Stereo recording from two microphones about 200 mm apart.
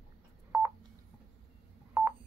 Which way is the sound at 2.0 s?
10° right (ahead or behind).